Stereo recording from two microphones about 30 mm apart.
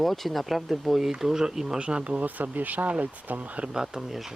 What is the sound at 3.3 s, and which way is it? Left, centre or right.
Speech, right.